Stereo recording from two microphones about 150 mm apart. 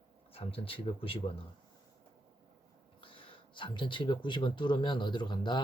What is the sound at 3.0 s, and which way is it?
Speech, 35° left (ahead or behind).